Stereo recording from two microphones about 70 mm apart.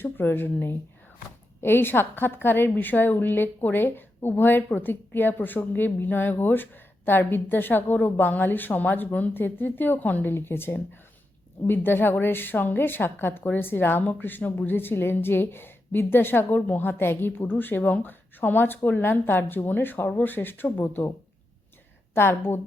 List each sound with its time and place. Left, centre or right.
0.0 s a woman's voice: left
22.1 s a woman's voice: left